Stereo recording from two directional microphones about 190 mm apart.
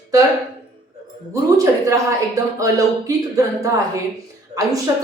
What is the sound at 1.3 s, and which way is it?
Speech, 15° right (ahead or behind).